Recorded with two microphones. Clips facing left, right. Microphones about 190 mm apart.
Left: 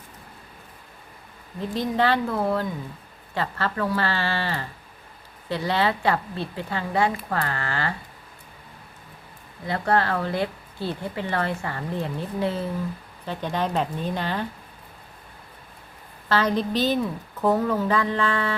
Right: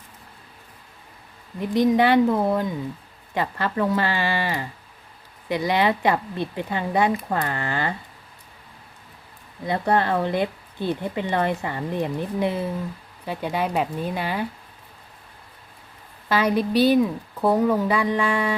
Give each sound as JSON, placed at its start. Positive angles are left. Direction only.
{"t": 1.5, "sound": "a woman's voice", "side_deg": -15}
{"t": 9.6, "sound": "a woman's voice", "side_deg": -20}
{"t": 16.3, "sound": "a woman's voice", "side_deg": -10}